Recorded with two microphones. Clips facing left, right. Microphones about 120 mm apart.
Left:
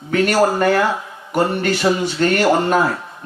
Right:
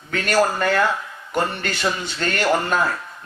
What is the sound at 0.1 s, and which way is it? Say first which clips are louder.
Speech: left 4 dB; 20° left (ahead or behind).